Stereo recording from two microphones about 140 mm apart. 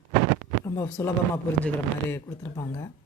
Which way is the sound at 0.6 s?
20° left (ahead or behind).